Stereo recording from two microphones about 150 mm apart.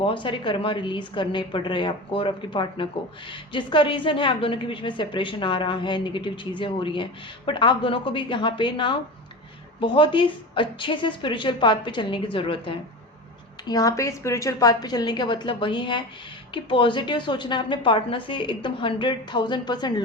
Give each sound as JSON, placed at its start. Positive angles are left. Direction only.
{"t": 0.0, "sound": "a woman's voice", "side_deg": 35}
{"t": 13.7, "sound": "a woman's voice", "side_deg": 20}